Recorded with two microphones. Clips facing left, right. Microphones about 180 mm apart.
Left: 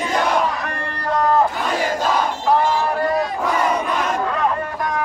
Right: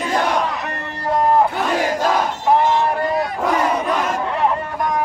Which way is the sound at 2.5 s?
20° right (ahead or behind).